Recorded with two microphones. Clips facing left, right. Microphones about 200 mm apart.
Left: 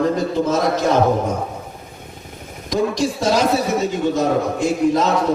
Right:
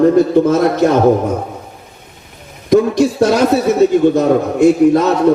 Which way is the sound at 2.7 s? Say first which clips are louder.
Right 8 dB; 60° right (ahead or behind).